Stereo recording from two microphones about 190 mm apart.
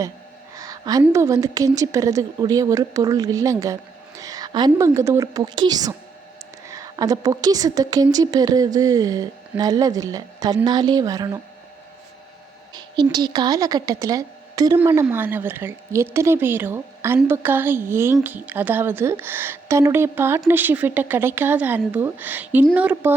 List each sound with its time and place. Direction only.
0.5 s a sound: 20° right (ahead or behind)
1.0 s a woman's voice: 15° right (ahead or behind)
12.7 s a woman's voice: 20° right (ahead or behind)